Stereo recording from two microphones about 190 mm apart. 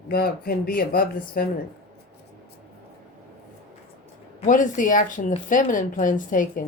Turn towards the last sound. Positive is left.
turn(degrees=45)  # may be behind; listen again after turning